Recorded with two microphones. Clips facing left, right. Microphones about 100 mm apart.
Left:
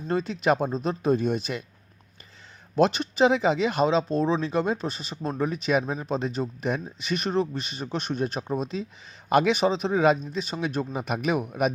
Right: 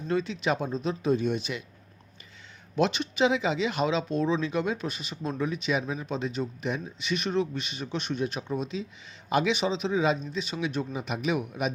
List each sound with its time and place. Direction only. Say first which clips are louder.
0.1 s speech: left 4 dB; 45° left (ahead or behind)
2.7 s speech: left 4 dB; 40° left (ahead or behind)